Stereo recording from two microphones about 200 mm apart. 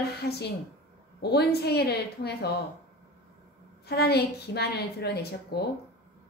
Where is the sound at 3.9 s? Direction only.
55° left (ahead or behind).